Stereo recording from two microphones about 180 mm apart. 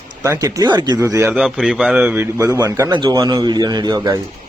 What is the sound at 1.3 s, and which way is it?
A man's voice, 5° right (ahead or behind).